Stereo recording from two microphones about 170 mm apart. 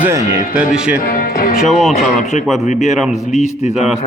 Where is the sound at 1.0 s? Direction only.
55° left (ahead or behind).